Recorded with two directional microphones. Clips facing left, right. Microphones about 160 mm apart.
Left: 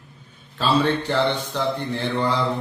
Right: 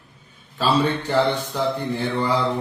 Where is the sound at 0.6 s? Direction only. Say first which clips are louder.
Even; 10° right (ahead or behind).